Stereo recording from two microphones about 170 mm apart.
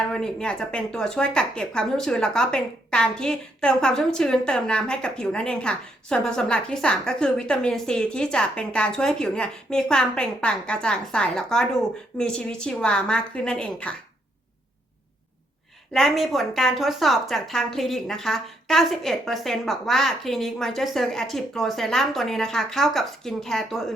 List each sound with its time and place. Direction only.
0.1 s a woman's voice: 5° left (ahead or behind)
15.9 s a woman's voice: centre (ahead or behind)